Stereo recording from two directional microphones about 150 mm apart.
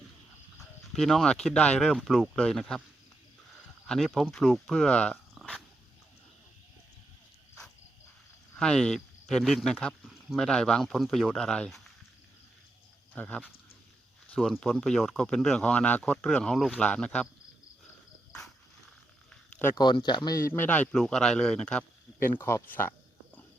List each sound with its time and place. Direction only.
0.9 s speech: centre (ahead or behind)
3.8 s speech: centre (ahead or behind)
8.5 s speech: 5° left (ahead or behind)
13.1 s speech: 10° left (ahead or behind)
19.3 s a sound: 10° left (ahead or behind)
19.7 s speech: 30° left (ahead or behind)
20.5 s a man's voice: 10° left (ahead or behind)